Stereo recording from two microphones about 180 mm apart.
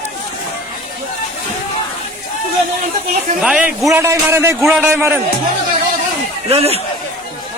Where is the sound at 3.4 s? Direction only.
5° right (ahead or behind).